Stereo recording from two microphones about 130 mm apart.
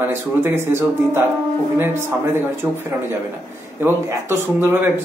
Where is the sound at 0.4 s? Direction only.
20° right (ahead or behind).